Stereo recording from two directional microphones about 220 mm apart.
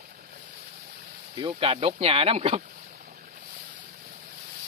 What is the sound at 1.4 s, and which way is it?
Speech, 25° right (ahead or behind).